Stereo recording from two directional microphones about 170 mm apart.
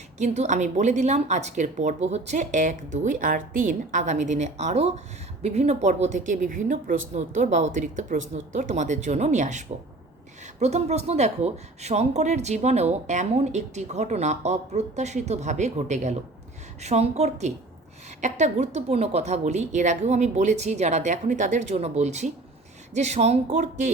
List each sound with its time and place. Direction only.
0.2 s a woman's voice: 45° right (ahead or behind)